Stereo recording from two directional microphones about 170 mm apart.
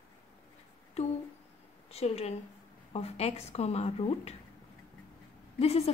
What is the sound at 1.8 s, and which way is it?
A woman's voice, 35° left (ahead or behind).